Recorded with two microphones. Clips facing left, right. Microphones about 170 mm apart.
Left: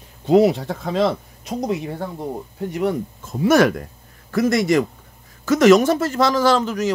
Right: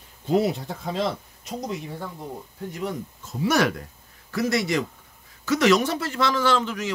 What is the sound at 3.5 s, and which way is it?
A man's voice, 50° left (ahead or behind).